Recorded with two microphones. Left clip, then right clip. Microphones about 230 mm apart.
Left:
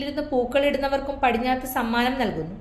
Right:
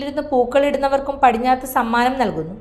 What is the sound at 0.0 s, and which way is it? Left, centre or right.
A woman's voice, centre.